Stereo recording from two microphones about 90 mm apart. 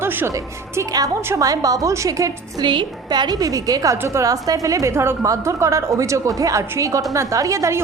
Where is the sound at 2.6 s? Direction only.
65° right (ahead or behind).